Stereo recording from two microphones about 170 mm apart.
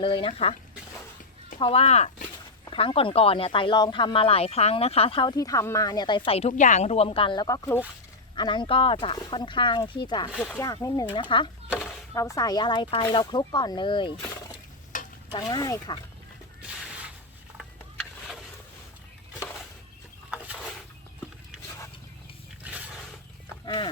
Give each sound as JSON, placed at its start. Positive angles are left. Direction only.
{"t": 0.0, "sound": "speech", "side_deg": 30}
{"t": 1.5, "sound": "speech", "side_deg": 35}
{"t": 10.3, "sound": "speech", "side_deg": 10}
{"t": 10.8, "sound": "speech", "side_deg": 20}
{"t": 14.9, "sound": "stir", "side_deg": 50}
{"t": 15.3, "sound": "speech", "side_deg": 25}
{"t": 22.6, "sound": "roaring cats", "side_deg": -10}
{"t": 23.6, "sound": "a sound", "side_deg": 25}